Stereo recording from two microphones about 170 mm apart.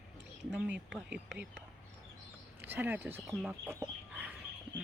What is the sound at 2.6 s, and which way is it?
Speech, 10° right (ahead or behind).